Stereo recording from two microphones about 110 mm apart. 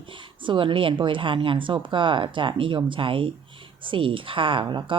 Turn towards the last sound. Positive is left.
turn(degrees=-45)  # may be behind; listen again after turning